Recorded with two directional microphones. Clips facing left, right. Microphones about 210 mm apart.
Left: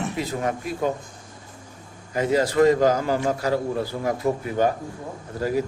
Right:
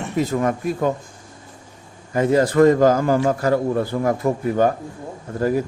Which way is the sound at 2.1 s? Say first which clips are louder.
Right 4 dB; 50° right (ahead or behind).